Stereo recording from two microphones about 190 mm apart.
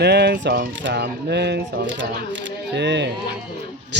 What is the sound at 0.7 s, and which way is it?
A man's voice, 70° right (ahead or behind).